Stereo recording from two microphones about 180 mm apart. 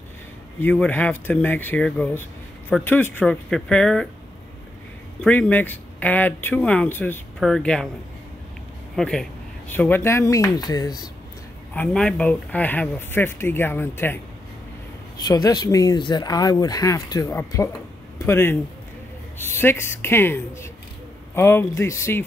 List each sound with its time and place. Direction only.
0.6 s speech: 10° left (ahead or behind)
5.2 s speech: 10° left (ahead or behind)
8.9 s speech: 5° left (ahead or behind); by 11.1 s 20° left (ahead or behind)
11.7 s speech: 5° left (ahead or behind)
15.2 s speech: 20° left (ahead or behind)